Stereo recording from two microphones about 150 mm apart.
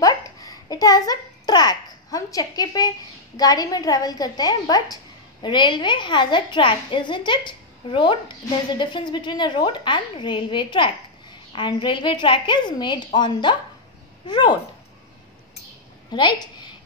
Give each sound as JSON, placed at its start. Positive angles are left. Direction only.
{"t": 0.0, "sound": "a child's voice", "side_deg": 25}
{"t": 16.1, "sound": "a woman's voice", "side_deg": 30}